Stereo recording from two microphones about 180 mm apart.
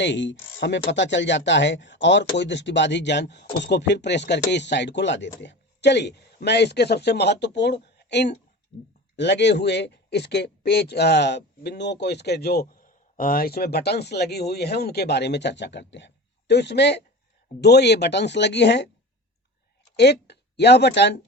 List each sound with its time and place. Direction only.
0.0 s speech: 85° left
20.0 s speech: 65° left (ahead or behind)